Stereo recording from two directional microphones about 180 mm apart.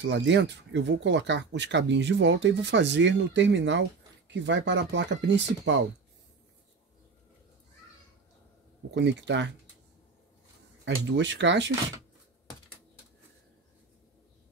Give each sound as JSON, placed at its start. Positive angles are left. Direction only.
{"t": 0.0, "sound": "speech", "side_deg": -80}
{"t": 8.9, "sound": "speech", "side_deg": -80}
{"t": 11.1, "sound": "speech", "side_deg": -80}